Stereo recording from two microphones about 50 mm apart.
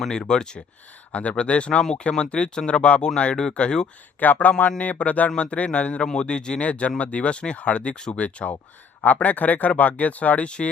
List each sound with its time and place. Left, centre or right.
0.1 s speech: centre
1.1 s speech: left
4.2 s speech: left; by 8.2 s centre
8.2 s speech: left